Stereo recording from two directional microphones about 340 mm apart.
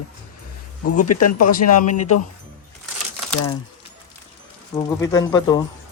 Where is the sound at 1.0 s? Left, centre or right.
Left.